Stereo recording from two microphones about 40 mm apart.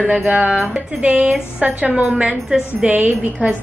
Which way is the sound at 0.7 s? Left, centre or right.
Right.